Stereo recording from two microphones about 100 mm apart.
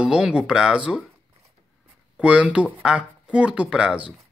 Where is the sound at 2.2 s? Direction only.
10° right (ahead or behind).